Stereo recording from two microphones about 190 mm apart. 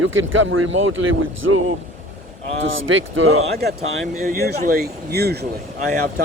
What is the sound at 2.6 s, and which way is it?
Speech, 90° right.